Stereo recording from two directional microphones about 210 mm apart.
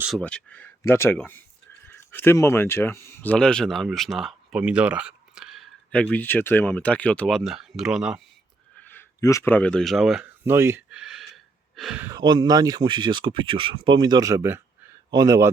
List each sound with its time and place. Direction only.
0.2 s speech: 5° left (ahead or behind)
8.8 s a sound: 10° left (ahead or behind)
11.8 s speech: centre (ahead or behind)
12.0 s a man's voice: 20° right (ahead or behind)